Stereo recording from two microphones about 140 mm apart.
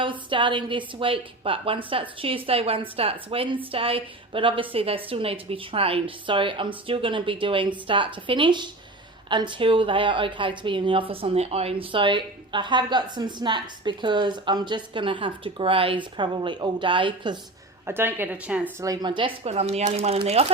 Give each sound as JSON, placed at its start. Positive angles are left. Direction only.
{"t": 0.0, "sound": "a woman's voice", "side_deg": -35}
{"t": 17.8, "sound": "a woman's voice", "side_deg": -15}
{"t": 18.8, "sound": "a woman's voice", "side_deg": -30}
{"t": 19.5, "sound": "speech", "side_deg": -50}